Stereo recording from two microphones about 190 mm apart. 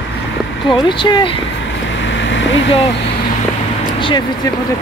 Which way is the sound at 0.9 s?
25° left (ahead or behind).